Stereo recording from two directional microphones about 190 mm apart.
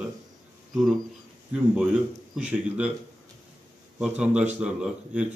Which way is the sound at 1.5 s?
5° right (ahead or behind).